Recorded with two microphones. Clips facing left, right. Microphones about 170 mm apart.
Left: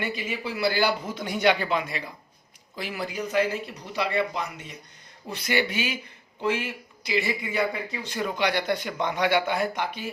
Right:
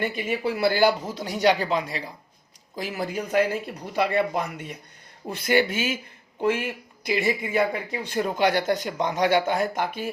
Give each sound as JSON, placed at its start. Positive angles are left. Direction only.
{"t": 0.0, "sound": "speech", "side_deg": -50}